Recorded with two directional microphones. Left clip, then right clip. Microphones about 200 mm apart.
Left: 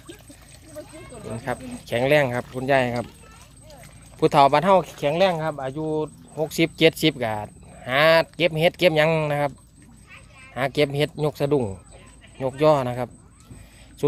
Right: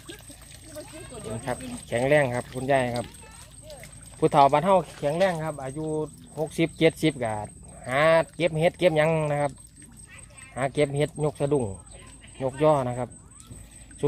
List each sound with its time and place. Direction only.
1.2 s speech: 5° left (ahead or behind)
1.9 s speech: 10° left (ahead or behind)
4.2 s speech: 15° left (ahead or behind)
10.5 s speech: 10° left (ahead or behind)